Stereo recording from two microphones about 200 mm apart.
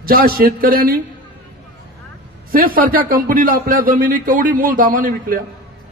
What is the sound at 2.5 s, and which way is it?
A man's voice, 45° right (ahead or behind).